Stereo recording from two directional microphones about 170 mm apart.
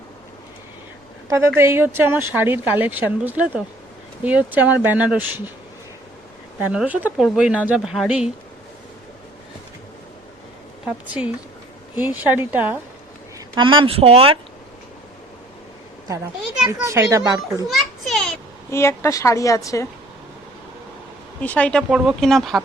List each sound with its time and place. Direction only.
1.3 s a woman's voice: 15° right (ahead or behind)
6.6 s a woman's voice: 10° right (ahead or behind)
10.8 s a woman's voice: 5° right (ahead or behind)
13.6 s speech: 30° right (ahead or behind)
16.8 s a child's voice: 20° right (ahead or behind)
17.7 s children playing: centre (ahead or behind)
18.7 s a woman's voice: 15° left (ahead or behind)
21.4 s speech: 10° left (ahead or behind)